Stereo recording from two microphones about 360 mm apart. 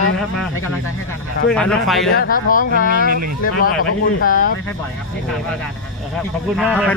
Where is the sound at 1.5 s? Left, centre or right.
Centre.